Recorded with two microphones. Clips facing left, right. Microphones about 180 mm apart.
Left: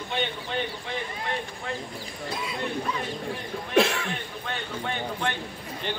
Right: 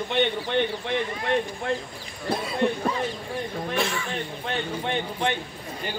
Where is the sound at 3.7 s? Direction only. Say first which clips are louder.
Left 7 dB; 80° left.